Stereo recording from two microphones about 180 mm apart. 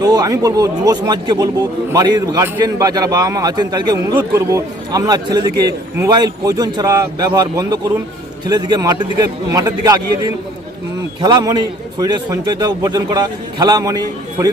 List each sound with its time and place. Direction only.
0.0 s speech: 20° right (ahead or behind)